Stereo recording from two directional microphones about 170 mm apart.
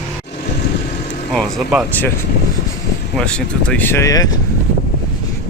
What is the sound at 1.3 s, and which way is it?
Speech, centre (ahead or behind).